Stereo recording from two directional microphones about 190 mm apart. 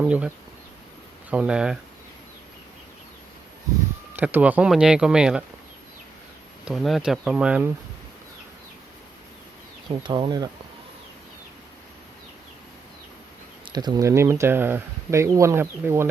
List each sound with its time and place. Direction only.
0.0 s speech: 10° right (ahead or behind)
4.1 s speech: 10° right (ahead or behind)
6.7 s speech: centre (ahead or behind)
9.9 s speech: 25° right (ahead or behind)
13.7 s speech: 20° right (ahead or behind)